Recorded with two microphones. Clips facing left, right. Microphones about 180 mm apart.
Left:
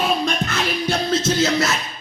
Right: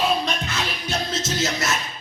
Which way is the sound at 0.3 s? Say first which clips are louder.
Left 5 dB; 55° left (ahead or behind).